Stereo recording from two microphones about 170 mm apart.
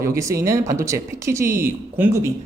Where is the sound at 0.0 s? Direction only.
15° right (ahead or behind).